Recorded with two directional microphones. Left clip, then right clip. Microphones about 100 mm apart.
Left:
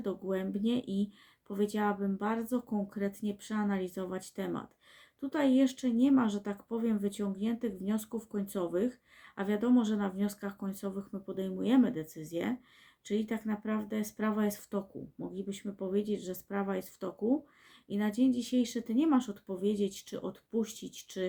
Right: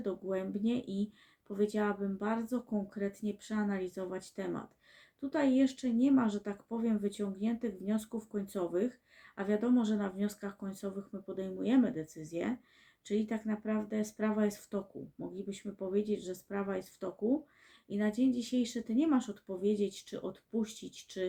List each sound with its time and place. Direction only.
0.0 s speech: 20° left (ahead or behind)